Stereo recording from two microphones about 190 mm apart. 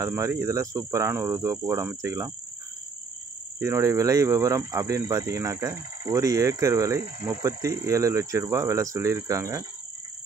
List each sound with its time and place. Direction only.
0.0 s speech: 15° right (ahead or behind)
3.5 s speech: 15° right (ahead or behind)